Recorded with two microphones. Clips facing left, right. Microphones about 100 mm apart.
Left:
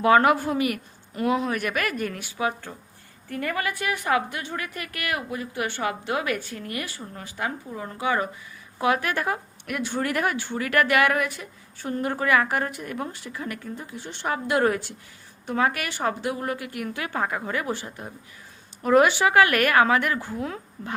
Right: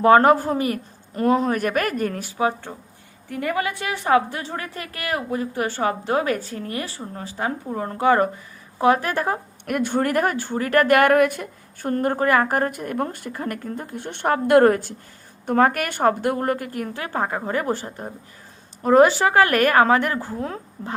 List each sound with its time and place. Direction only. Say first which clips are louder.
0.0 s a woman's voice: right 4 dB; 35° right (ahead or behind)
3.2 s a woman's voice: right 4 dB; 20° right (ahead or behind); by 8.3 s 45° right (ahead or behind)
8.8 s a woman's voice: right 5 dB; 35° right (ahead or behind)